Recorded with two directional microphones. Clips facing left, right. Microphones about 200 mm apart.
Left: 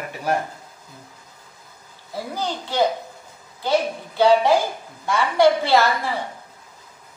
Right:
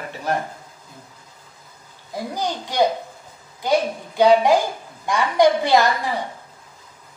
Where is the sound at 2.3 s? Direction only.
15° right (ahead or behind).